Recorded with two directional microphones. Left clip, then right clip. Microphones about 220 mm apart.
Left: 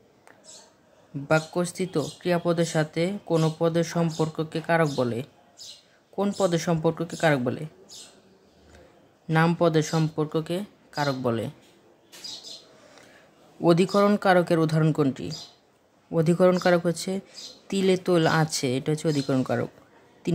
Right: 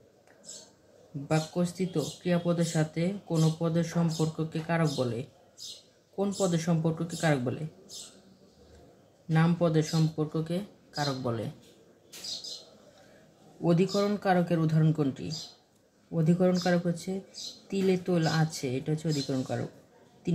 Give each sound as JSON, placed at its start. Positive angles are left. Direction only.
{"t": 1.3, "sound": "speech", "side_deg": 40}
{"t": 9.3, "sound": "speech", "side_deg": 40}
{"t": 13.6, "sound": "speech", "side_deg": 40}